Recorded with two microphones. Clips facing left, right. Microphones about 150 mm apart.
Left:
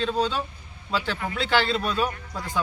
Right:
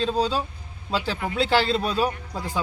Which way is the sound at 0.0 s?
35° right (ahead or behind).